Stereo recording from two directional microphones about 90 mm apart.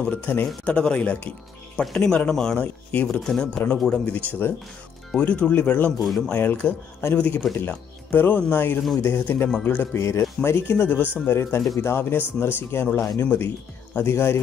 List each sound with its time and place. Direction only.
0.0 s speech: 15° left (ahead or behind)
6.0 s speech: 5° left (ahead or behind)
6.3 s speech: 20° left (ahead or behind)
7.2 s speech: 15° left (ahead or behind)